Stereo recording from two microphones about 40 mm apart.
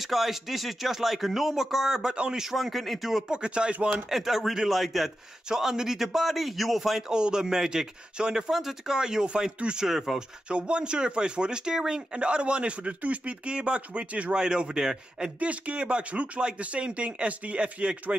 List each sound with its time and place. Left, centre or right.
0.0 s speech: centre
2.1 s speech: right
2.5 s speech: centre
3.3 s speech: right
4.1 s speech: centre
5.5 s speech: centre
7.1 s speech: centre
8.5 s speech: centre; by 9.8 s right
9.8 s speech: centre
10.5 s speech: right
14.3 s speech: right
15.3 s speech: right